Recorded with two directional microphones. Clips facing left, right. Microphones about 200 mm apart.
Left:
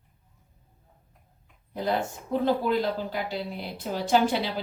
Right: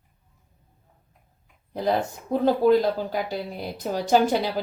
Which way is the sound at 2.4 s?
45° right (ahead or behind).